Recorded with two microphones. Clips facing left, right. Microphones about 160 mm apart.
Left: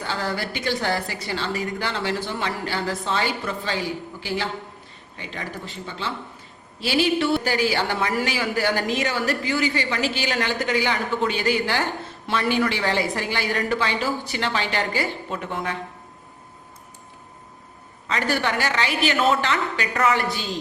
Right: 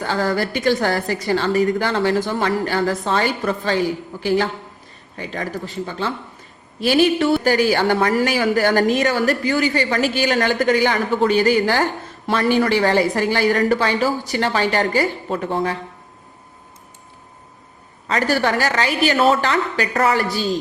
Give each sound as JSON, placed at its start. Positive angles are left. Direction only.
{"t": 0.0, "sound": "a man's voice", "side_deg": -45}
{"t": 18.1, "sound": "a woman's voice", "side_deg": -40}